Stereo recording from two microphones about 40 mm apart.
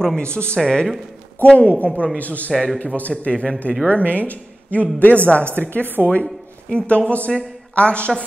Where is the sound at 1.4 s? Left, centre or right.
Left.